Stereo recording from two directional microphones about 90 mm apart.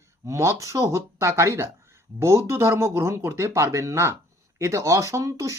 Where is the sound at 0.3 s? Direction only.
35° right (ahead or behind).